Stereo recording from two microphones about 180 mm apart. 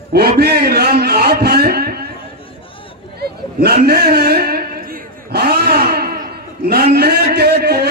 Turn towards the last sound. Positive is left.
turn(degrees=-60)  # may be behind; listen again after turning